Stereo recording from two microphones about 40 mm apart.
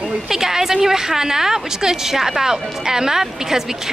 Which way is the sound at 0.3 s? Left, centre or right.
Centre.